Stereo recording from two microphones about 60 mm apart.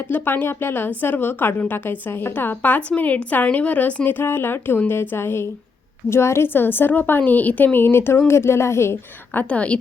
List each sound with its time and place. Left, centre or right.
0.1 s a woman's voice: left
9.3 s a woman's voice: left